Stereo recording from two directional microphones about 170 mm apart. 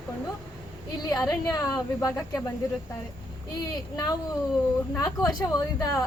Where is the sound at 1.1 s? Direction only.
20° left (ahead or behind).